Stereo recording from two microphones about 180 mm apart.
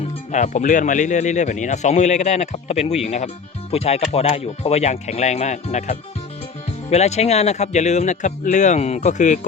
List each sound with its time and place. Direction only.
0.3 s speech: 40° left (ahead or behind)